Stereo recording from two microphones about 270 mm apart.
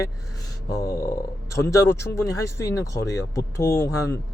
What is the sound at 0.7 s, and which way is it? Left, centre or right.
Speech, centre.